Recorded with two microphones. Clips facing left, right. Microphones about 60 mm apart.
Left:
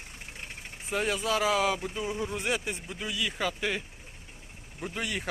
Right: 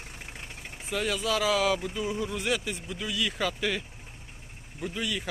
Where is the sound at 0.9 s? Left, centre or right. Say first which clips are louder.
Even; left.